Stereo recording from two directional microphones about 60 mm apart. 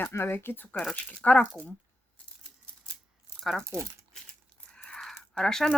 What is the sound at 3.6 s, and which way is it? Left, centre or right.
Speech, right.